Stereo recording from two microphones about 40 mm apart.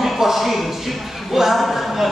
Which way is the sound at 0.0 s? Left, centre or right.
Centre.